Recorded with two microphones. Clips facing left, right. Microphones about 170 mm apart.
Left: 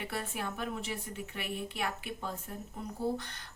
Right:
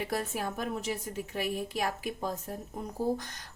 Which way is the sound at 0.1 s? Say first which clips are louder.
Right 5 dB; 40° right (ahead or behind).